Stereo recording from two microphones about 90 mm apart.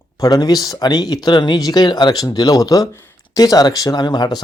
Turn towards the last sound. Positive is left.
turn(degrees=55)  # may be behind; listen again after turning